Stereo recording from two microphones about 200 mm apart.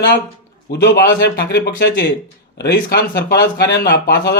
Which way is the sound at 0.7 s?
55° left (ahead or behind).